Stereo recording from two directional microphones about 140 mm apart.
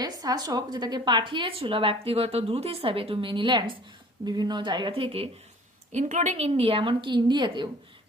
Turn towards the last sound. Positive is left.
turn(degrees=-30)  # may be behind; listen again after turning